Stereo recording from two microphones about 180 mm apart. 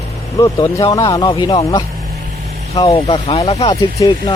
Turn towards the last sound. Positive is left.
turn(degrees=20)  # may be behind; listen again after turning